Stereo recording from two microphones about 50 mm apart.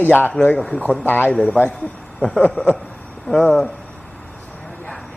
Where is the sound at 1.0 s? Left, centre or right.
Left.